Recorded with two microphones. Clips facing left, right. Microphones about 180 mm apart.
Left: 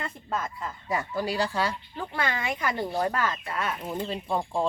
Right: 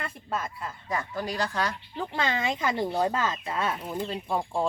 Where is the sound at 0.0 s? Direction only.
5° right (ahead or behind).